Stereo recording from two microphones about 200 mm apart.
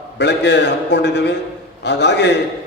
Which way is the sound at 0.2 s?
60° left (ahead or behind).